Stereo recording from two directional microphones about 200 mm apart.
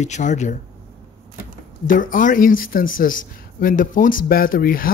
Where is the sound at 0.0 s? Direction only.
35° left (ahead or behind).